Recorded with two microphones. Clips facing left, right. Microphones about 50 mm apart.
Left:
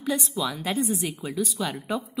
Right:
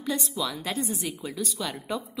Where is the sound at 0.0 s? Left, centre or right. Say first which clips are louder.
Left 2 dB; centre.